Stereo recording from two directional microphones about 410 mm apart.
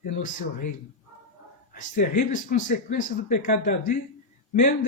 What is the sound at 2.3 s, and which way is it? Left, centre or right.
Speech, centre.